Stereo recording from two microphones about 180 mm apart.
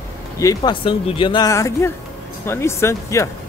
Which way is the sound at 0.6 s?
30° left (ahead or behind).